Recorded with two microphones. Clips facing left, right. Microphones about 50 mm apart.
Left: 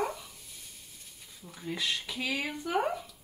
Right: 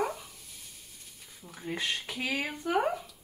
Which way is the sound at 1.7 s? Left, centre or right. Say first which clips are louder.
Even; right.